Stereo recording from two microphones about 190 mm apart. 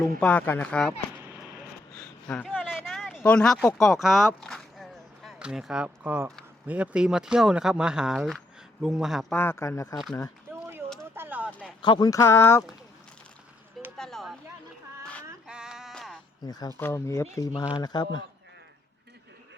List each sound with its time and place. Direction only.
0.2 s speech: 5° left (ahead or behind)
2.2 s speech: 5° left (ahead or behind)
4.4 s a sound: centre (ahead or behind)
6.7 s speech: 5° right (ahead or behind)
9.3 s speech: 10° left (ahead or behind)
10.5 s a sound: 10° right (ahead or behind)
11.8 s speech: 25° left (ahead or behind)
13.9 s a sound: centre (ahead or behind)
15.4 s bleat: 5° right (ahead or behind)
16.5 s a man's voice: 20° left (ahead or behind)